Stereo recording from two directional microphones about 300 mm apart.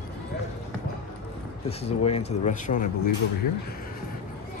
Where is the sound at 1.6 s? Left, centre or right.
Centre.